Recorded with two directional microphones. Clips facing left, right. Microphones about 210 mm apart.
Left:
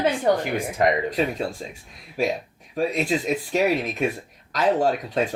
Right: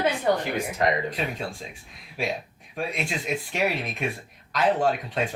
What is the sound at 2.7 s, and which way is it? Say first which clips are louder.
Speech: left 7 dB; 40° left (ahead or behind).